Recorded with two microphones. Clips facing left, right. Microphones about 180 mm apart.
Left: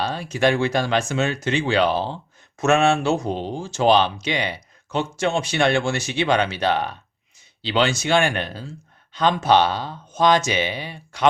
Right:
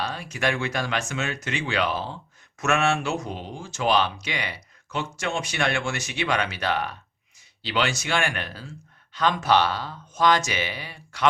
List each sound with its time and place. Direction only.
0.0 s speech: 30° left (ahead or behind)